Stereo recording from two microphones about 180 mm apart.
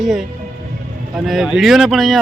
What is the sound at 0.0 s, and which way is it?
Speech, centre (ahead or behind).